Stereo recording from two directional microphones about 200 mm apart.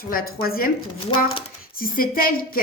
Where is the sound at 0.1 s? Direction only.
50° left (ahead or behind).